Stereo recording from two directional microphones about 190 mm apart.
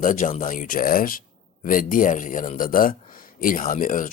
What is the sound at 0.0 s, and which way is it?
A man's voice, 45° left (ahead or behind).